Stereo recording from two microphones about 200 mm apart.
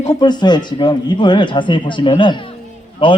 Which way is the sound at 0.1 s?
20° left (ahead or behind).